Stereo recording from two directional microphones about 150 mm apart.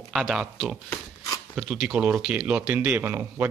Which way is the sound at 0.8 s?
20° left (ahead or behind).